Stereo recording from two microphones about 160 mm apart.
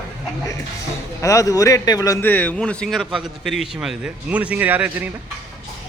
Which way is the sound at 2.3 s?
10° left (ahead or behind).